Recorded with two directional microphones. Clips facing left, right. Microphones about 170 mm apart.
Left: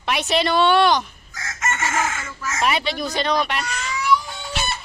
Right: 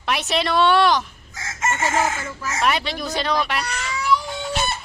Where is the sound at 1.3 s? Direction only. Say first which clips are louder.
Right 2 dB; 25° right (ahead or behind).